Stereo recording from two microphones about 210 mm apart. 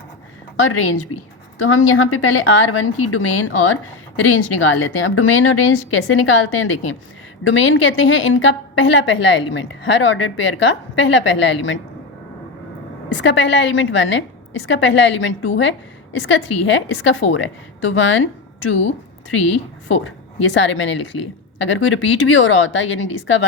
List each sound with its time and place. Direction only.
0.6 s a woman's voice: 85° left; by 11.8 s 65° left (ahead or behind)
13.1 s a woman's voice: 60° left (ahead or behind)
19.9 s a woman's voice: 65° left (ahead or behind)